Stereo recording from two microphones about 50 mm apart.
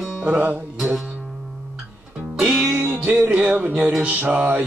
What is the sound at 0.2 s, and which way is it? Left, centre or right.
Music, right.